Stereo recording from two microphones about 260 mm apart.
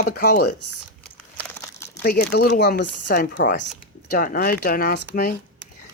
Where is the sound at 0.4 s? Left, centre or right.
Left.